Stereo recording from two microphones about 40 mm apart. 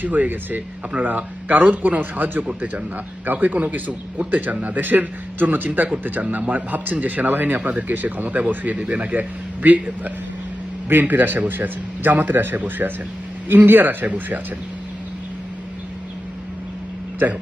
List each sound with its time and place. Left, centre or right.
0.0 s a man's voice: right
11.0 s a man's voice: right